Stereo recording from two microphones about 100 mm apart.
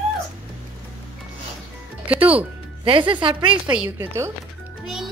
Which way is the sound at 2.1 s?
15° right (ahead or behind).